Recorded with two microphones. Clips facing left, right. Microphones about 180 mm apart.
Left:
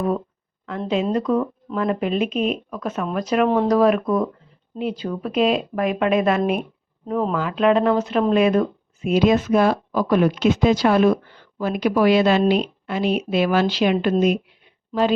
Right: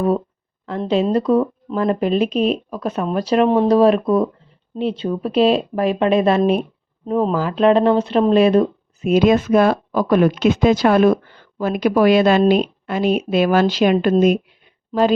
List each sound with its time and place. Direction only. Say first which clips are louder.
1.1 s speech: right 4 dB; 30° right (ahead or behind)
9.0 s speech: right 3 dB; 50° right (ahead or behind)